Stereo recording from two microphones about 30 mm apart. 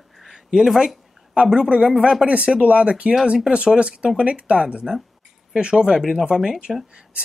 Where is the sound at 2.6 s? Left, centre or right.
Right.